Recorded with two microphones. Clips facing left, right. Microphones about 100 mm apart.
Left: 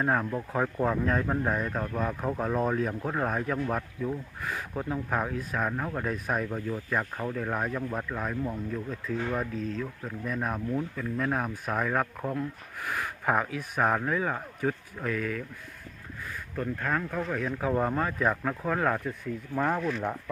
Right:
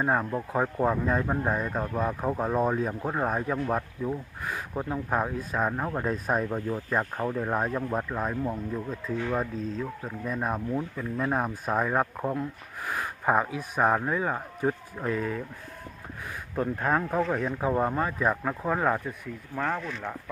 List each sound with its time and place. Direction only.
0.0 s speech: 10° right (ahead or behind); by 15.4 s 25° right (ahead or behind)
16.8 s speech: 30° right (ahead or behind)
17.7 s speech: 10° right (ahead or behind)
19.5 s speech: 5° left (ahead or behind)